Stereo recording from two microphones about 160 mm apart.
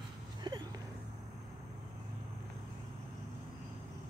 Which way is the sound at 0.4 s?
25° right (ahead or behind).